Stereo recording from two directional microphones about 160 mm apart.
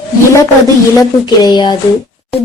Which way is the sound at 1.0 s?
25° left (ahead or behind).